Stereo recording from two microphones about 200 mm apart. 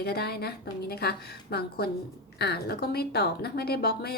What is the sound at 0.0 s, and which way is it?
A woman's voice, 50° left (ahead or behind).